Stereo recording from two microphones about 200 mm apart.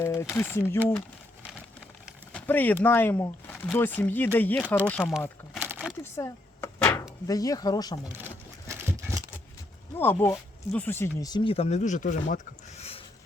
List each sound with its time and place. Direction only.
0.0 s speech: 15° left (ahead or behind)
2.3 s speech: 10° left (ahead or behind)
5.5 s a sound: 5° right (ahead or behind)
6.0 s a sound: 15° left (ahead or behind)
7.3 s speech: 15° left (ahead or behind)
10.0 s speech: 10° left (ahead or behind); by 13.0 s 30° left (ahead or behind)